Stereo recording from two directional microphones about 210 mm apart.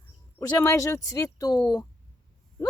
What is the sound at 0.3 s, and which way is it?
Speech, 15° left (ahead or behind).